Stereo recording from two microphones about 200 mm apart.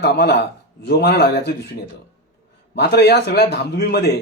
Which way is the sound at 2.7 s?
55° left (ahead or behind).